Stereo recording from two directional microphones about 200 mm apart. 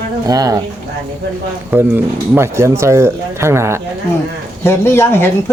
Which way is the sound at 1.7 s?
10° right (ahead or behind).